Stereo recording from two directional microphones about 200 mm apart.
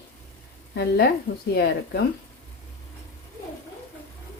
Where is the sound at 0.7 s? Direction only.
55° left (ahead or behind).